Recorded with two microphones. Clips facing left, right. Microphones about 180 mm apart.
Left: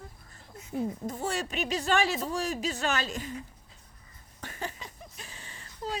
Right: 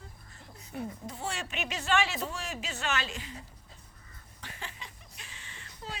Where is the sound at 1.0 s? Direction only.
45° left (ahead or behind).